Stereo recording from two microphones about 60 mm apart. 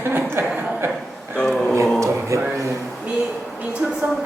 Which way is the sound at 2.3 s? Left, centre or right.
Right.